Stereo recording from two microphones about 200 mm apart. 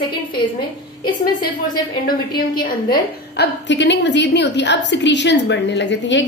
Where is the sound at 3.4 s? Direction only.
60° left (ahead or behind).